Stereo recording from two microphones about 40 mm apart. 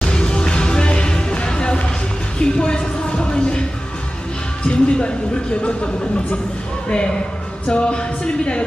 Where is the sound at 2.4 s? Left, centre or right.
Left.